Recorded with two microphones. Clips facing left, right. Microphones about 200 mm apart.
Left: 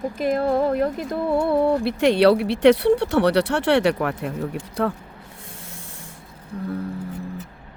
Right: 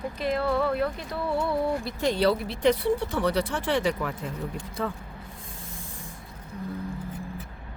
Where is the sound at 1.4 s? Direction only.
60° left (ahead or behind).